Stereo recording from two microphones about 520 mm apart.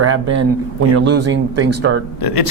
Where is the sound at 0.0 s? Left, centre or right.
Right.